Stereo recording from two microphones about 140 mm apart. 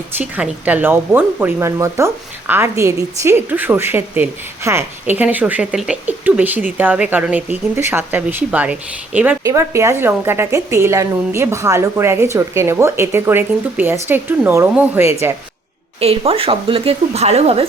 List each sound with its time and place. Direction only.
0.2 s a woman's voice: 10° right (ahead or behind)
9.4 s a woman's voice: 20° right (ahead or behind)
16.0 s a woman's voice: 45° right (ahead or behind)